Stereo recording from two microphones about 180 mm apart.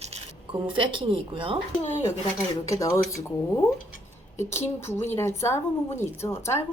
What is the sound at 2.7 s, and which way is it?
A woman's voice, 15° left (ahead or behind).